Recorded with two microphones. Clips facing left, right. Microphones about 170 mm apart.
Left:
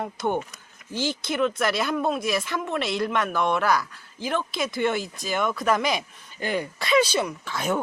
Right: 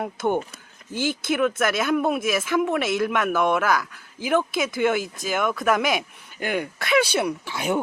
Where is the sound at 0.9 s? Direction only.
55° right (ahead or behind).